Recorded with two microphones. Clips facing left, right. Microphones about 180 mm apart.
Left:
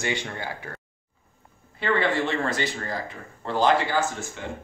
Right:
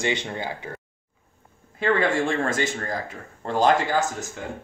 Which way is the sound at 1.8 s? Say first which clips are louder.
Right 2 dB; 45° right (ahead or behind).